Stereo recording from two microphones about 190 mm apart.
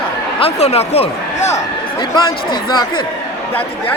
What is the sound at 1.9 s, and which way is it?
Speech, 20° left (ahead or behind).